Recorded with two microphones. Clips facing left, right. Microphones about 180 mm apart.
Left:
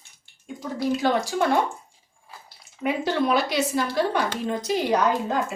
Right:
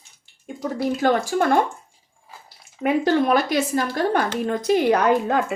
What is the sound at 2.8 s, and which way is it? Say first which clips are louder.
A woman's voice: right 5 dB; 50° right (ahead or behind).